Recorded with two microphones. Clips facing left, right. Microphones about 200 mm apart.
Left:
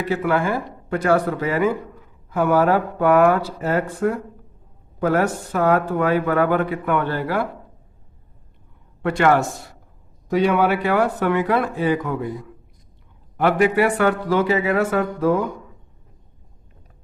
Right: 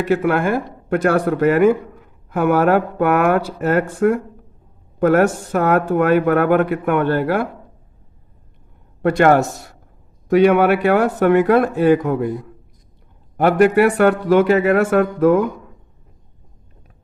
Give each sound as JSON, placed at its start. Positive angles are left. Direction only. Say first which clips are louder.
{"t": 0.2, "sound": "speech", "louder": "right 3 dB", "side_deg": -55}
{"t": 9.0, "sound": "speech", "louder": "right 4 dB", "side_deg": -45}
{"t": 10.2, "sound": "speech", "louder": "right 5 dB", "side_deg": -60}